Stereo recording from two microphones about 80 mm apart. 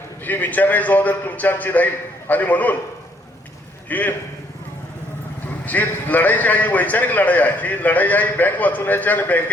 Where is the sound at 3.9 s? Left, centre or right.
Left.